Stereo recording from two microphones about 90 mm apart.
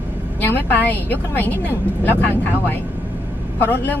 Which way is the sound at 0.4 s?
20° left (ahead or behind).